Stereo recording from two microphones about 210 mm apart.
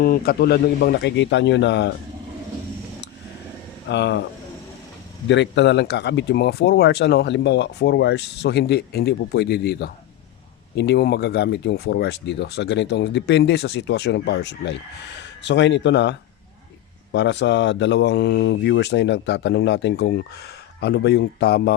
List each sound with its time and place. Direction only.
0.0 s speech: 45° left (ahead or behind)
3.8 s speech: 55° left (ahead or behind)
5.3 s speech: 60° left (ahead or behind)